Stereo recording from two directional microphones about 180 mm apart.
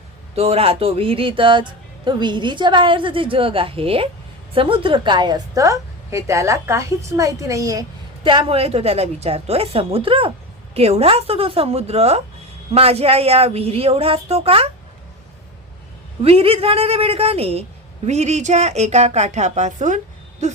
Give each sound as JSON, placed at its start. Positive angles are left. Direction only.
{"t": 0.3, "sound": "a woman's voice", "side_deg": -35}
{"t": 16.2, "sound": "speech", "side_deg": -35}